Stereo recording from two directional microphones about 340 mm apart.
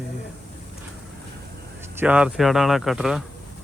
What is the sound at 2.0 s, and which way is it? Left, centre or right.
Speech, centre.